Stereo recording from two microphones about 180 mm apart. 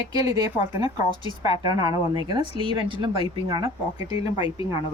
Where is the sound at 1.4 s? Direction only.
30° left (ahead or behind).